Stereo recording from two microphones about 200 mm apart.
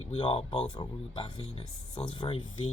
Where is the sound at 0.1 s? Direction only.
25° left (ahead or behind).